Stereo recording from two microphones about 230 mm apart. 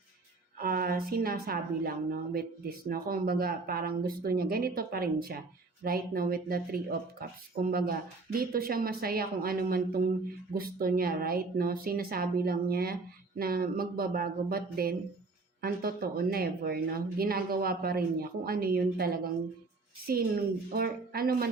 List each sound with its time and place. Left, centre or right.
0.6 s a woman's voice: right
20.7 s a woman's voice: right